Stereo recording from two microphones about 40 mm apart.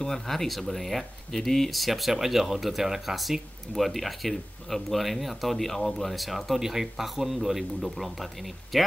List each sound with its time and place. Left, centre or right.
0.0 s speech: centre